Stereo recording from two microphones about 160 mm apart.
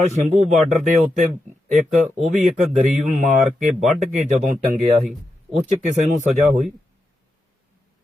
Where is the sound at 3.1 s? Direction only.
50° right (ahead or behind).